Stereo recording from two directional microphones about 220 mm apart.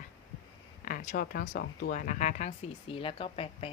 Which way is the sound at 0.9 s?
40° left (ahead or behind).